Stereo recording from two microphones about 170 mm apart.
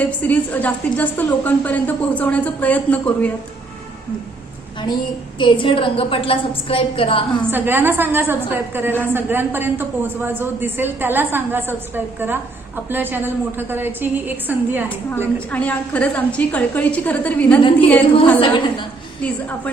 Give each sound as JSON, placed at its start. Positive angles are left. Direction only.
{"t": 0.0, "sound": "a woman's voice", "side_deg": 10}
{"t": 5.4, "sound": "a woman's voice", "side_deg": 30}
{"t": 7.5, "sound": "a woman's voice", "side_deg": -10}
{"t": 15.5, "sound": "a woman's voice", "side_deg": 10}
{"t": 18.3, "sound": "a woman's voice", "side_deg": 30}
{"t": 19.2, "sound": "a woman's voice", "side_deg": 10}